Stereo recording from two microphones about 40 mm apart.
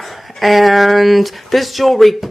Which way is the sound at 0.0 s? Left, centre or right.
Centre.